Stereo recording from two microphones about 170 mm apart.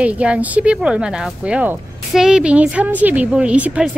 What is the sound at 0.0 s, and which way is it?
Speech, 5° right (ahead or behind).